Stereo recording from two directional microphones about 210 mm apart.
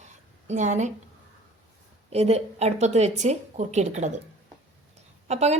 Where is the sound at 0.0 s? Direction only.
35° right (ahead or behind).